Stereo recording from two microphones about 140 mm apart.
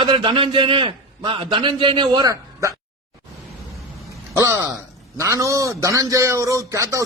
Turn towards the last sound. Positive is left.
turn(degrees=-20)  # may be behind; listen again after turning